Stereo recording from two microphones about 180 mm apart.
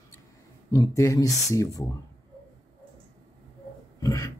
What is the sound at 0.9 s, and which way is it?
Speech, 15° left (ahead or behind).